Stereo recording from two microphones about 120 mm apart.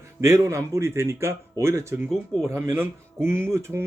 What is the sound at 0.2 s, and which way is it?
Speech, 25° right (ahead or behind).